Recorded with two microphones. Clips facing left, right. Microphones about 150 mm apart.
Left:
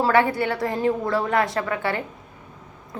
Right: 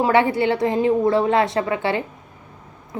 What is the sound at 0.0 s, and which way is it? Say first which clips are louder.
A woman's voice: right 2 dB; 20° right (ahead or behind).